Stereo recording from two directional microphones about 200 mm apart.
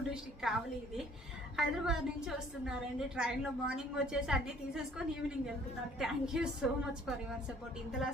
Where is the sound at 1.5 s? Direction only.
Centre (ahead or behind).